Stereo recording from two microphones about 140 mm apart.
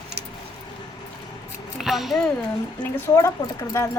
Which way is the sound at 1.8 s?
Centre (ahead or behind).